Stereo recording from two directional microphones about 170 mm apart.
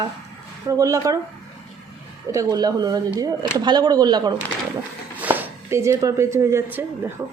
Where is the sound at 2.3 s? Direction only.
20° right (ahead or behind).